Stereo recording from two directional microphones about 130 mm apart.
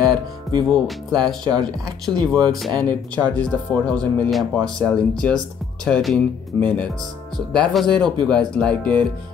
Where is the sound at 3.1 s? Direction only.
10° left (ahead or behind).